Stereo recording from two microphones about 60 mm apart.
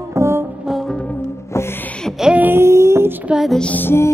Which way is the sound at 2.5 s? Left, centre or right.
Right.